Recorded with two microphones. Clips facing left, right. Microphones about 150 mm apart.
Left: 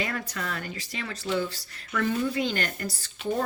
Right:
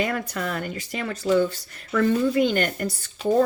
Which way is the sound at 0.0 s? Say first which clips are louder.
Right 6 dB; 45° right (ahead or behind).